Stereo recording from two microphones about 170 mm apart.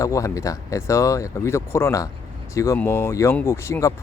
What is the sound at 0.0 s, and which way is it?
Speech, 20° left (ahead or behind).